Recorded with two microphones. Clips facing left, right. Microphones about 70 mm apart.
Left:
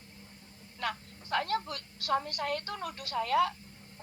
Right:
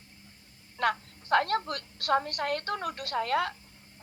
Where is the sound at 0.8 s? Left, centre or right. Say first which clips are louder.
Right 8 dB; right.